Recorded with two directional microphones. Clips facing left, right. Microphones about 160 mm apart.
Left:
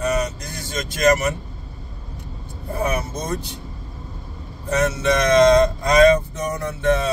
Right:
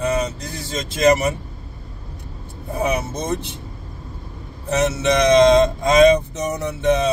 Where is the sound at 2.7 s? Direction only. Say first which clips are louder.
Right 2 dB; 20° right (ahead or behind).